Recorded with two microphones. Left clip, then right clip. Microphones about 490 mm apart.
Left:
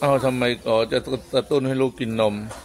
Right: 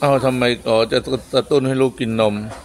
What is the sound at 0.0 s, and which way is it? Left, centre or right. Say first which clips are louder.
A man's voice: right 4 dB; left.